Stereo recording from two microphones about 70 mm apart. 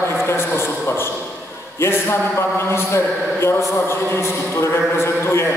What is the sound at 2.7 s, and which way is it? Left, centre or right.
Speech, left.